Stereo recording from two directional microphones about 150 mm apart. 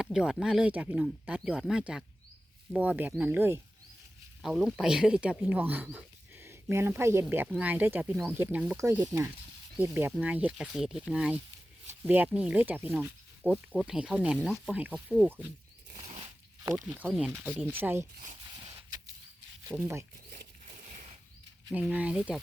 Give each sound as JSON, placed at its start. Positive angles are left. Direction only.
{"t": 0.0, "sound": "speech", "side_deg": -5}
{"t": 4.4, "sound": "speech", "side_deg": -5}
{"t": 17.0, "sound": "speech", "side_deg": -10}
{"t": 19.7, "sound": "speech", "side_deg": -15}
{"t": 20.7, "sound": "a sound", "side_deg": -50}
{"t": 21.7, "sound": "speech", "side_deg": -10}